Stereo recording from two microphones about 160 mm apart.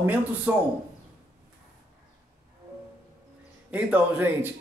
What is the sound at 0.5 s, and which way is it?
Speech, 10° right (ahead or behind).